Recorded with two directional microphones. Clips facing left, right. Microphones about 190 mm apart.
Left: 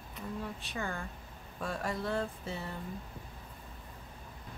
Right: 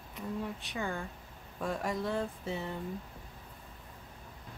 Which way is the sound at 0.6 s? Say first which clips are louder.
Right 2 dB; 15° right (ahead or behind).